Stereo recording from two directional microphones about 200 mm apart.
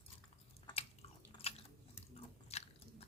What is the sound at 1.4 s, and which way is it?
Biting, 30° left (ahead or behind).